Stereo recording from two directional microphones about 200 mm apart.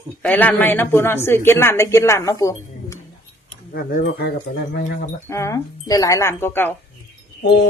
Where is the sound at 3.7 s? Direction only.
50° left (ahead or behind).